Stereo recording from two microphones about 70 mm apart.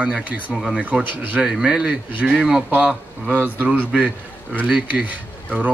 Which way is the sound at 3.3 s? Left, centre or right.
Right.